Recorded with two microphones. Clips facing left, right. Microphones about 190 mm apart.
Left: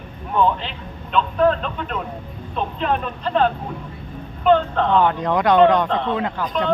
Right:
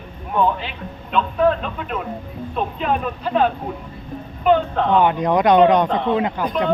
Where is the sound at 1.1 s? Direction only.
5° right (ahead or behind).